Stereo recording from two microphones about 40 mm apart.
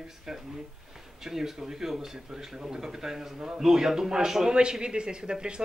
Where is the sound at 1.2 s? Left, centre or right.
Centre.